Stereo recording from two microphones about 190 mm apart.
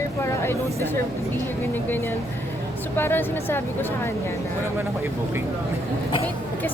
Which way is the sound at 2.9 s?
10° left (ahead or behind).